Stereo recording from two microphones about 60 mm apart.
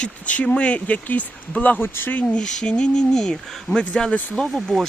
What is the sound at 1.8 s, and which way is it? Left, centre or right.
Speech, left.